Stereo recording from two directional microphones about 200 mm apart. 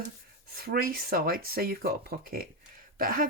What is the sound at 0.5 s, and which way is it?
Speech, 50° right (ahead or behind).